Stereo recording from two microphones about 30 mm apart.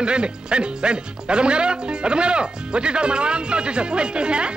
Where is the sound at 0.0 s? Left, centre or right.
Right.